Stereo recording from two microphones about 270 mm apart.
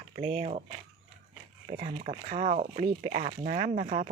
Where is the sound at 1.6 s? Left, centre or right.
Right.